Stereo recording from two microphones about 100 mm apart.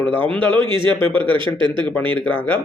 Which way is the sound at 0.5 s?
55° right (ahead or behind).